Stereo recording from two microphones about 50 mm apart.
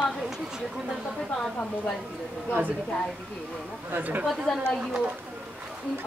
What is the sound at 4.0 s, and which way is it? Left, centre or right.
Speech, right.